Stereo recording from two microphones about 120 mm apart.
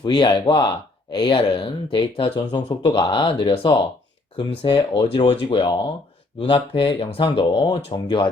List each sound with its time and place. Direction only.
0.0 s speech: 35° left (ahead or behind)